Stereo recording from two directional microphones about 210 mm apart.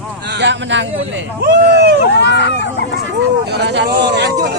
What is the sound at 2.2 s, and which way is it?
Speech, 55° left (ahead or behind).